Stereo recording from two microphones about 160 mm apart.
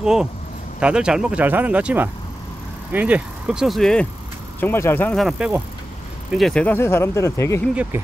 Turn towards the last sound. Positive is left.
turn(degrees=-10)  # may be behind; listen again after turning